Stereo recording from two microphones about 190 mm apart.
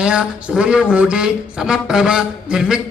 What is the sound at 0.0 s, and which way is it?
Speech, 5° right (ahead or behind).